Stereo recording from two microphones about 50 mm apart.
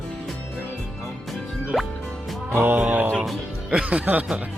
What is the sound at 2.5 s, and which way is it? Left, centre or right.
Music, right.